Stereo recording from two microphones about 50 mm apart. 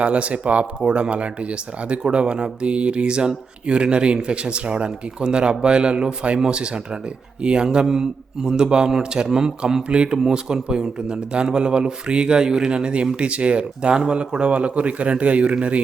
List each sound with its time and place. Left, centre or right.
0.0 s a man's voice: right